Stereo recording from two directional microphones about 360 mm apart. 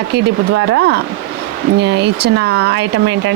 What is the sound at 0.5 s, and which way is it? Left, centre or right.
Speech, right.